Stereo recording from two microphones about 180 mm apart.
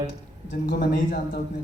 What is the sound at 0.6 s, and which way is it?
Speech, 55° left (ahead or behind).